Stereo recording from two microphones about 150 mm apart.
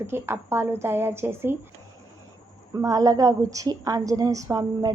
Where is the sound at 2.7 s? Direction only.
25° right (ahead or behind).